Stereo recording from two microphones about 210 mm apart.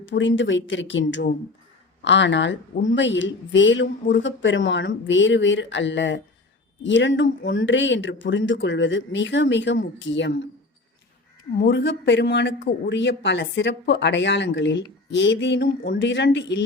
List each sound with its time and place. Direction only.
0.0 s speech: 60° left (ahead or behind)
11.5 s speech: 55° left (ahead or behind)